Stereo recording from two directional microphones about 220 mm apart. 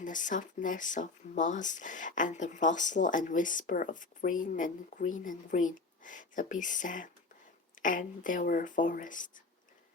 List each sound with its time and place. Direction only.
0.0 s speech: 35° left (ahead or behind)